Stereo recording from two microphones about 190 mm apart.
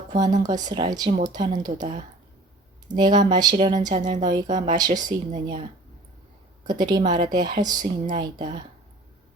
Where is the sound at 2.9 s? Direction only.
20° right (ahead or behind).